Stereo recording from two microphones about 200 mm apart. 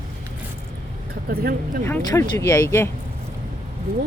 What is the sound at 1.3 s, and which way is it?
Speech, 50° right (ahead or behind).